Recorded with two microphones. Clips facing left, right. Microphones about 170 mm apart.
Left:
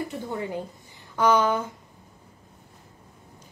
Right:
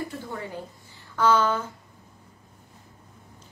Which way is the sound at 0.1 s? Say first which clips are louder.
Left 4 dB; 20° left (ahead or behind).